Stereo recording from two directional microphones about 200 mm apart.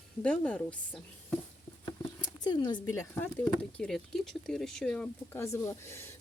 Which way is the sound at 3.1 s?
10° left (ahead or behind).